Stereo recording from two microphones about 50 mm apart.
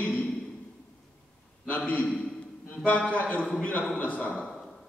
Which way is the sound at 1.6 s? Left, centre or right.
Left.